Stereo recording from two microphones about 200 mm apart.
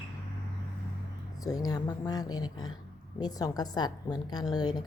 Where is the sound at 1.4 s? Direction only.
20° left (ahead or behind).